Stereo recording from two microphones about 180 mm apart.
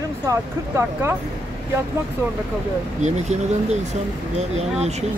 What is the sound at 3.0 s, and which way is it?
Speech, 40° right (ahead or behind).